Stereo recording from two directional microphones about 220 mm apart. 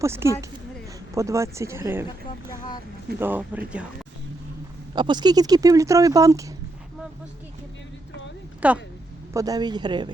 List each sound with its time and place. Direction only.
0.0 s speech: 10° right (ahead or behind)
2.0 s speech: 20° left (ahead or behind)
3.2 s speech: 10° right (ahead or behind)
4.9 s speech: 20° right (ahead or behind)
8.6 s speech: 5° right (ahead or behind)